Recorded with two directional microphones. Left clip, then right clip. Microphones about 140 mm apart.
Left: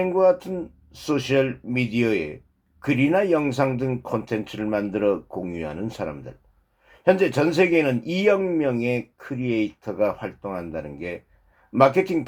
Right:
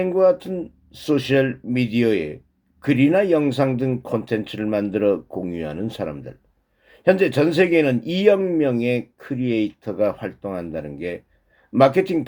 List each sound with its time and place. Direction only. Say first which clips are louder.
0.0 s speech: right 2 dB; 20° right (ahead or behind)